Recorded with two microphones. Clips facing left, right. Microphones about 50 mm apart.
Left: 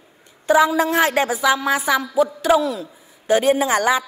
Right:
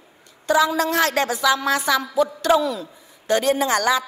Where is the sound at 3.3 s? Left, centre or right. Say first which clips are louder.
Left 3 dB; centre.